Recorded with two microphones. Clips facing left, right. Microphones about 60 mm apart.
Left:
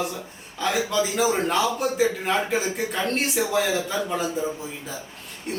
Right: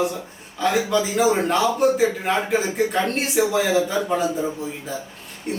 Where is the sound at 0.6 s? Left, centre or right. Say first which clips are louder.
Right 3 dB; centre.